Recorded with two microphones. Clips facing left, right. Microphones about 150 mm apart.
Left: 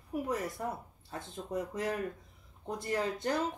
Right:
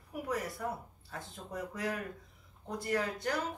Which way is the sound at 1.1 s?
25° left (ahead or behind).